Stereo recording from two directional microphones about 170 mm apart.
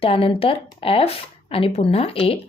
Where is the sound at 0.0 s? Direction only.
35° left (ahead or behind).